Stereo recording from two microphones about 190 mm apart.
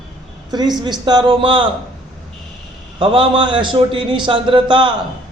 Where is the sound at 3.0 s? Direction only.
25° right (ahead or behind).